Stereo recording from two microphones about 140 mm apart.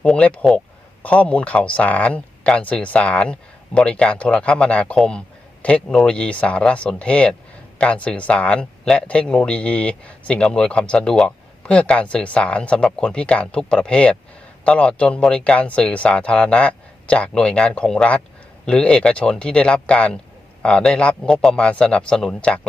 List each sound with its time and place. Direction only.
0.0 s speech: 10° left (ahead or behind)